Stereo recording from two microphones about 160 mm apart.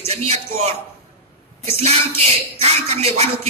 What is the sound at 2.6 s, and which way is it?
Speech, 40° right (ahead or behind).